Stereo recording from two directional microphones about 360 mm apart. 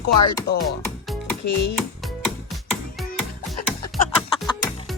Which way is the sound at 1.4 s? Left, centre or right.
Left.